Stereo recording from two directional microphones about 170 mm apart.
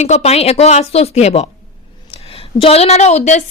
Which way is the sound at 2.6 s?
35° left (ahead or behind).